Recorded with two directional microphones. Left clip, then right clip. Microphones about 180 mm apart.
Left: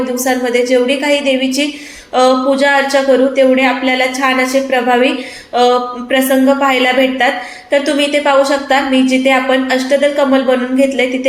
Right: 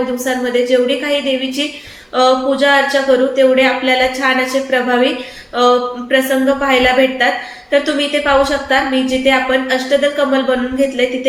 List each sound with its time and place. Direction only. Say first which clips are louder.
0.3 s a woman's voice: left 2 dB; 25° left (ahead or behind)
2.1 s a woman's voice: left 2 dB; 20° left (ahead or behind)